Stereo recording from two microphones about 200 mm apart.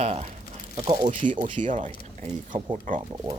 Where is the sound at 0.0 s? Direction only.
30° right (ahead or behind).